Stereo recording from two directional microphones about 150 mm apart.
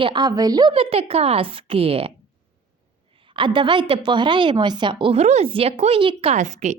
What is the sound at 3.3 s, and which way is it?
A woman's voice, 35° right (ahead or behind).